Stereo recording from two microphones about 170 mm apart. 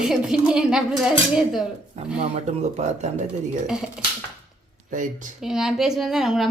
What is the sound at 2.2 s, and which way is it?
Speech, 40° right (ahead or behind).